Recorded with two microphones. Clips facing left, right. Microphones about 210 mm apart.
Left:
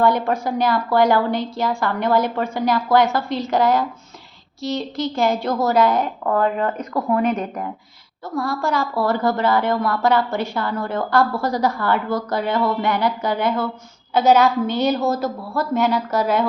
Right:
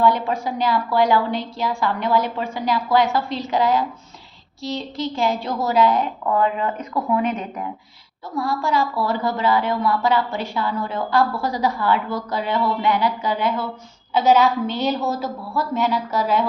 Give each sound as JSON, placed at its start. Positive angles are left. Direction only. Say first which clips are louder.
{"t": 0.0, "sound": "a woman's voice", "louder": "left 1 dB", "side_deg": 45}